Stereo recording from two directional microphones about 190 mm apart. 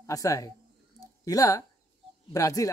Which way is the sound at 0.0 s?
15° left (ahead or behind).